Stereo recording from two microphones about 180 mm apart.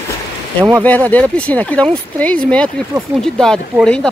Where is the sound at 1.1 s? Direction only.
10° left (ahead or behind).